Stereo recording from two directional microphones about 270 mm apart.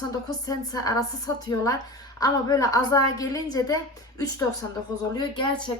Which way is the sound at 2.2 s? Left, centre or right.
Centre.